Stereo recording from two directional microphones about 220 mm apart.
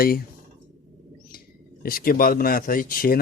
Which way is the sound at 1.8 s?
40° left (ahead or behind).